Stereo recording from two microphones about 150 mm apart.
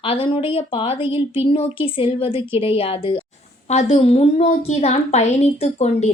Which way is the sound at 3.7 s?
50° left (ahead or behind).